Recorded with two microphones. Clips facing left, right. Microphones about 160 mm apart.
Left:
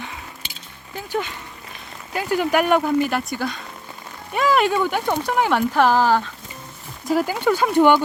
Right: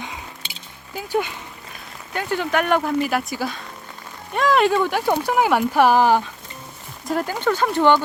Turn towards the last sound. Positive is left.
turn(degrees=10)  # may be behind; listen again after turning